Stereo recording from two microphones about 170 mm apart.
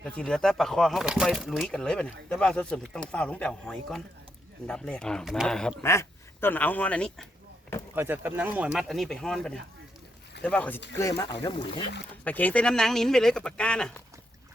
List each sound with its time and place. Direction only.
0.0 s speech: 5° left (ahead or behind)
5.8 s speech: 15° left (ahead or behind)
7.9 s speech: 10° right (ahead or behind); by 10.8 s 10° left (ahead or behind)
11.1 s speech: 30° left (ahead or behind)
12.2 s speech: 10° left (ahead or behind)